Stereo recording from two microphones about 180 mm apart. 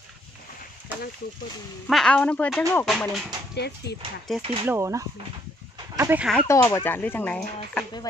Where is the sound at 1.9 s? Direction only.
5° left (ahead or behind).